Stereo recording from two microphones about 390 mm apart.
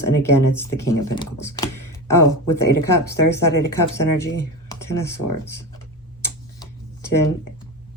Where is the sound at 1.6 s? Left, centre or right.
Left.